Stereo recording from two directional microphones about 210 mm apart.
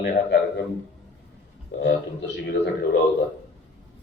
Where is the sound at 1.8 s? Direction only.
55° left (ahead or behind).